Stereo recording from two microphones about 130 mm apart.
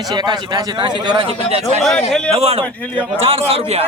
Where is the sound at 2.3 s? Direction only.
55° right (ahead or behind).